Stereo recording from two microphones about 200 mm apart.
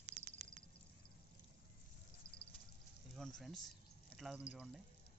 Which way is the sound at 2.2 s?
50° left (ahead or behind).